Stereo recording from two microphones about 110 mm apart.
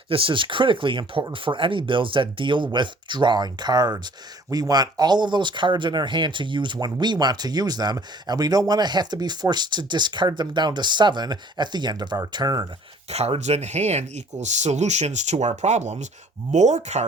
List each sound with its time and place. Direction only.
0.1 s speech: 55° right (ahead or behind)
13.1 s speech: 70° right (ahead or behind); by 17.1 s 90° right